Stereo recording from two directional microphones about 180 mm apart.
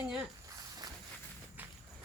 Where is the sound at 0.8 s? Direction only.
20° right (ahead or behind).